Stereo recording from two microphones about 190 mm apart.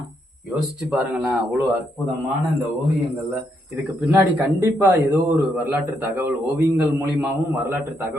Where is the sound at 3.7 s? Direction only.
10° right (ahead or behind).